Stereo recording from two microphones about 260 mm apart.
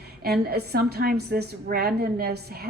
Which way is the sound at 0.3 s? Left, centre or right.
Right.